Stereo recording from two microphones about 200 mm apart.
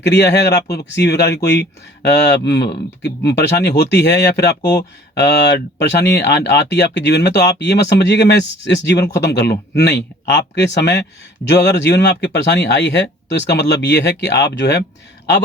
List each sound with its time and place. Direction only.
0.0 s speech: 60° left (ahead or behind)